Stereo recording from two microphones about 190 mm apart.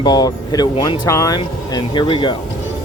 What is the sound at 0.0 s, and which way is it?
Speech, 20° left (ahead or behind).